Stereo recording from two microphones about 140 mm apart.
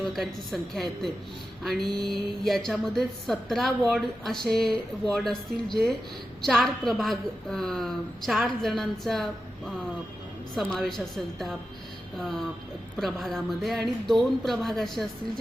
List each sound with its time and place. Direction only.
0.0 s a woman's voice: centre (ahead or behind)
10.5 s a woman's voice: 5° left (ahead or behind)